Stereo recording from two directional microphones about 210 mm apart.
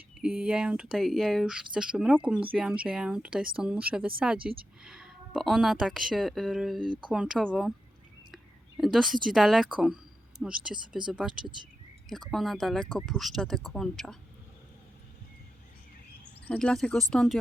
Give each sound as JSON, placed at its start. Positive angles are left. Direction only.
{"t": 0.2, "sound": "a woman's voice", "side_deg": -5}
{"t": 8.8, "sound": "a woman's voice", "side_deg": 0}
{"t": 16.5, "sound": "a woman's voice", "side_deg": 5}